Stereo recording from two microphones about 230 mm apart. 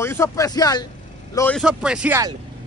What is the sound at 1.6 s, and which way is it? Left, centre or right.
Speech, centre.